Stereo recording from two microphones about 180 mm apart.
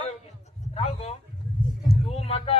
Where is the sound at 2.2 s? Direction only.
35° left (ahead or behind).